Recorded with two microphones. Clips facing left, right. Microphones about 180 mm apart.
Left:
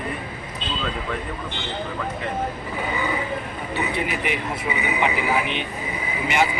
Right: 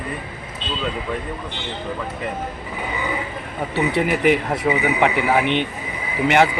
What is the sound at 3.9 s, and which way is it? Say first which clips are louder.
A man's voice: right 8 dB; 75° right (ahead or behind).